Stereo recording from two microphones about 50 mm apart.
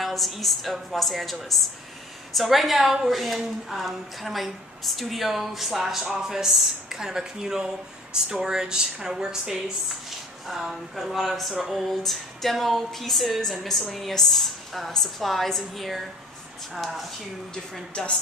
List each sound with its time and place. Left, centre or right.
0.0 s a woman's voice: centre
17.9 s a woman's voice: centre